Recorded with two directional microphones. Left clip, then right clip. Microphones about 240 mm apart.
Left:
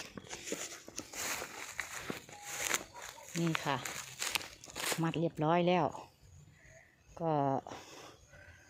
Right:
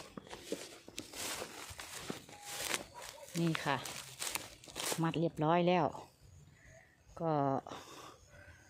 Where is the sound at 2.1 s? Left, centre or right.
Centre.